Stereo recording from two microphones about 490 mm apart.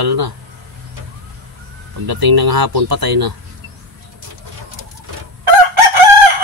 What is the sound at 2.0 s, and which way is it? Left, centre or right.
Speech, right.